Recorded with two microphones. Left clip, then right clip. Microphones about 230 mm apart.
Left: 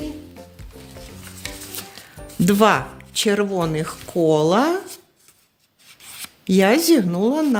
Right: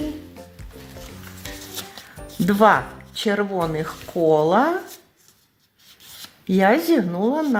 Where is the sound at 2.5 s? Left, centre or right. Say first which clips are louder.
Right 1 dB; left.